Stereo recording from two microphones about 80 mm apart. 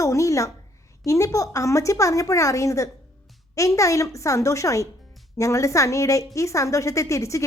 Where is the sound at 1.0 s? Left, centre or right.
Left.